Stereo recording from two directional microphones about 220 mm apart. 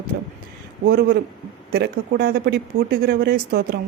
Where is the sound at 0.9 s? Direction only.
40° right (ahead or behind).